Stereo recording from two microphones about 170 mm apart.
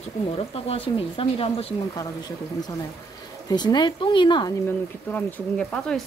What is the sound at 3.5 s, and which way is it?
Speech, 25° left (ahead or behind).